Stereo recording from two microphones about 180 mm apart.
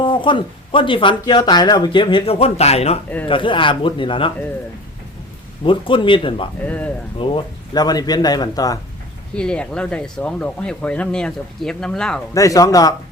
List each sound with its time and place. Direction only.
0.0 s speech: 25° left (ahead or behind)
5.6 s speech: 30° left (ahead or behind)
6.7 s speech: 10° left (ahead or behind)
7.2 s speech: 30° left (ahead or behind)
9.3 s speech: 5° left (ahead or behind)
12.3 s speech: 20° left (ahead or behind)